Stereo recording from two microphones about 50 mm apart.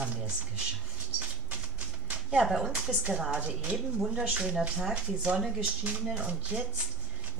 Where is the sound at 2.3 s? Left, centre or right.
Centre.